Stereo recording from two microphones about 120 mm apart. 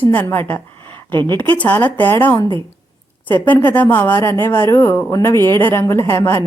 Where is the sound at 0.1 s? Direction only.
15° left (ahead or behind).